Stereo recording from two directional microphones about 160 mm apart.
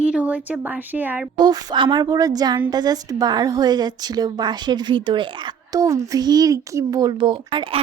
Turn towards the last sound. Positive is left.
turn(degrees=-35)  # may be behind; listen again after turning